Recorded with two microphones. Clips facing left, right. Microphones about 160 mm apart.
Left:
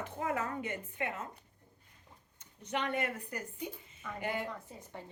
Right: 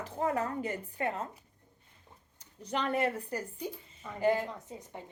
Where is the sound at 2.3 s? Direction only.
35° right (ahead or behind).